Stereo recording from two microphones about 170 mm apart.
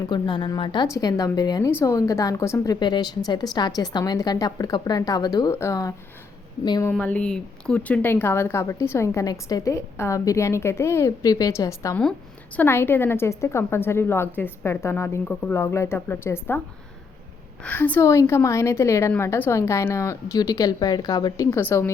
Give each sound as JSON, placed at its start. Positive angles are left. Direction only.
{"t": 0.0, "sound": "a woman's voice", "side_deg": 25}
{"t": 6.9, "sound": "speech", "side_deg": 10}
{"t": 17.6, "sound": "speech", "side_deg": 10}